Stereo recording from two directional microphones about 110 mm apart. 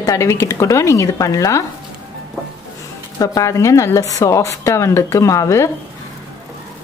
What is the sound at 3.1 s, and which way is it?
Speech, 35° left (ahead or behind).